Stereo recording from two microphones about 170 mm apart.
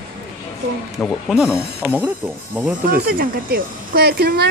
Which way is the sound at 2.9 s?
60° right (ahead or behind).